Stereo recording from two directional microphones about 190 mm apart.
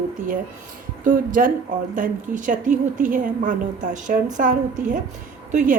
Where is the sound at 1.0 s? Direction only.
45° right (ahead or behind).